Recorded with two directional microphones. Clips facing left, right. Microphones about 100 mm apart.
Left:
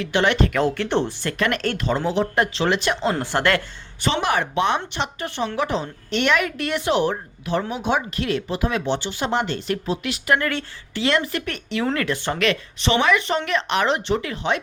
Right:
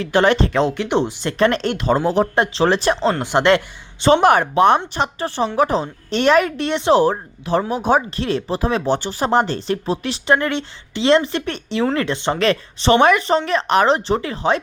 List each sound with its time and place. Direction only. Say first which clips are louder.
0.0 s speech: right 4 dB; 40° right (ahead or behind); by 1.4 s 20° right (ahead or behind)
1.4 s speech: right 6 dB; 30° right (ahead or behind)
1.9 s speech: right 7 dB; 45° right (ahead or behind)
2.3 s speech: right 4 dB; 30° right (ahead or behind)
3.2 s speech: right 5 dB; 20° right (ahead or behind)
4.1 s speech: right 9 dB; 50° right (ahead or behind)
4.9 s speech: right 5 dB; 35° right (ahead or behind)
12.5 s speech: right 7 dB; 40° right (ahead or behind)
13.2 s speech: right 5 dB; 35° right (ahead or behind)